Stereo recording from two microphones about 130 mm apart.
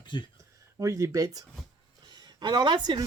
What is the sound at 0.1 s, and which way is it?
Speech, 40° left (ahead or behind).